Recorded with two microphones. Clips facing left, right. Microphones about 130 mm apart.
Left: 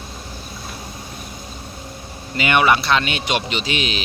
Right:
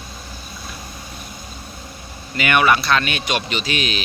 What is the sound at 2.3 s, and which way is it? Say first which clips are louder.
Speech: even; 25° left (ahead or behind).